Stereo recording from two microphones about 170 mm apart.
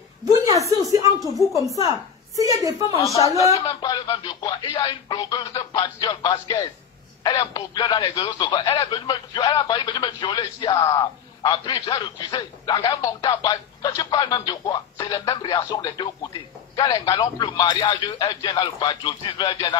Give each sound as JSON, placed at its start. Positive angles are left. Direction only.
{"t": 0.2, "sound": "a sound", "side_deg": -20}
{"t": 0.7, "sound": "a woman's voice", "side_deg": -20}
{"t": 3.0, "sound": "speech", "side_deg": 20}